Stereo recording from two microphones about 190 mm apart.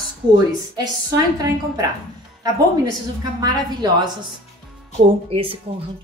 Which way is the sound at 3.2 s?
20° right (ahead or behind).